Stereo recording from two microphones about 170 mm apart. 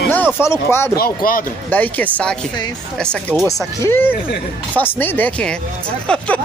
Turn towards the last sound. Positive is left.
turn(degrees=5)  # may be behind; listen again after turning